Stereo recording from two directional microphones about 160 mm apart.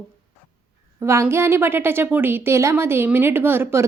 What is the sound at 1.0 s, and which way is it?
A woman's voice, 15° right (ahead or behind).